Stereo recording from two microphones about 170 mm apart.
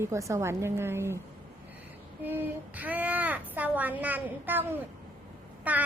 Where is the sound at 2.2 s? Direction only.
10° right (ahead or behind).